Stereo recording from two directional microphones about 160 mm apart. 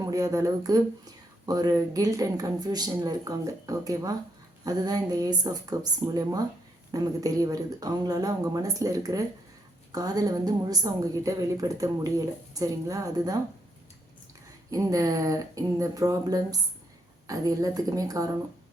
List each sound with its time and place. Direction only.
0.0 s a woman's voice: 20° right (ahead or behind)
14.7 s a woman's voice: 20° right (ahead or behind)